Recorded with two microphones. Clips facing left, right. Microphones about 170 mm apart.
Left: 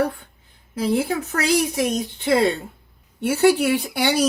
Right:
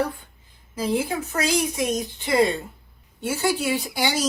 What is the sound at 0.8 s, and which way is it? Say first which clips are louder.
Speech: left 3 dB; 60° left (ahead or behind).